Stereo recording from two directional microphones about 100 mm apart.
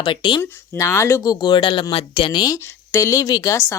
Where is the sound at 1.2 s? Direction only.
40° left (ahead or behind); by 2.4 s 65° left (ahead or behind).